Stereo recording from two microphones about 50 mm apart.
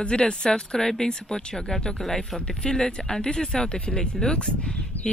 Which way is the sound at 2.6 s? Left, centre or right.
Centre.